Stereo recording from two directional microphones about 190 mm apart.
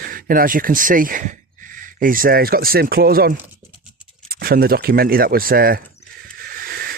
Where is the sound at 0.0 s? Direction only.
50° right (ahead or behind).